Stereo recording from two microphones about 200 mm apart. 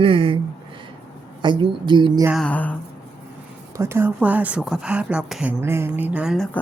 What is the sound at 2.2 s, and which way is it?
Speech, centre (ahead or behind).